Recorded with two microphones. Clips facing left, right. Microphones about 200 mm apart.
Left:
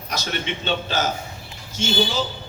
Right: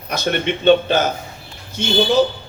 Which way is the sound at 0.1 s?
55° right (ahead or behind).